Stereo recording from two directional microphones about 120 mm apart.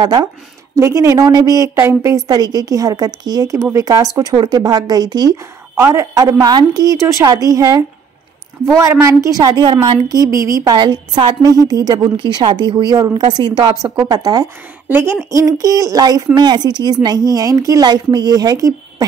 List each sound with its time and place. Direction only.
0.0 s a woman's voice: 35° right (ahead or behind)
5.8 s a woman's voice: 25° right (ahead or behind)
10.6 s speech: 35° right (ahead or behind)
14.9 s a woman's voice: 20° right (ahead or behind)